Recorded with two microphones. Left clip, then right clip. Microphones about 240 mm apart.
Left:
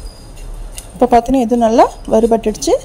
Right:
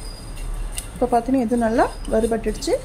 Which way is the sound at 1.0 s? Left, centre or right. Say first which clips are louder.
Left 8 dB; left.